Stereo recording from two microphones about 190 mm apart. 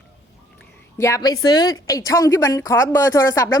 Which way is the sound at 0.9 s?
15° left (ahead or behind).